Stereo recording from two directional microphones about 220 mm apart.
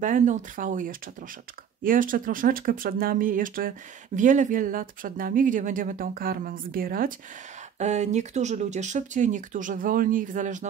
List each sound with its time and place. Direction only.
0.0 s speech: 35° right (ahead or behind)